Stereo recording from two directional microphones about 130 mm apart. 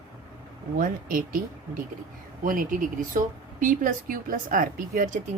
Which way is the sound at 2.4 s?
90° right.